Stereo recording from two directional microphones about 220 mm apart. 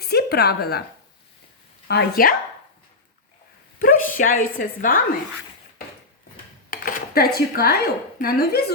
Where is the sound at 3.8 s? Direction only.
40° left (ahead or behind).